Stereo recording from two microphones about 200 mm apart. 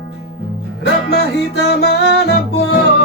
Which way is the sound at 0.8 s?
55° left (ahead or behind).